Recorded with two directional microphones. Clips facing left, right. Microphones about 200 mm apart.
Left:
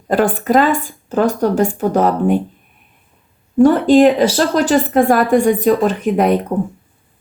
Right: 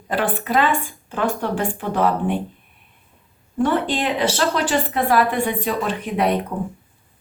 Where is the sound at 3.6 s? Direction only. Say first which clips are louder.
Left 11 dB; 40° left (ahead or behind).